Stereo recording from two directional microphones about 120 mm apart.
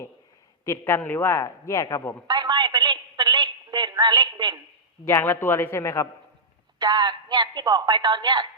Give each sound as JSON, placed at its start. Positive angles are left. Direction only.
{"t": 0.6, "sound": "a man's voice", "side_deg": 20}
{"t": 2.2, "sound": "a sound", "side_deg": -35}
{"t": 5.0, "sound": "a man's voice", "side_deg": 20}
{"t": 6.7, "sound": "speech", "side_deg": -35}